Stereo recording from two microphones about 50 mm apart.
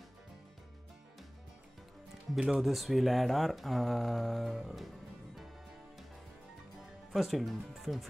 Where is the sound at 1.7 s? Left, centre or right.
Centre.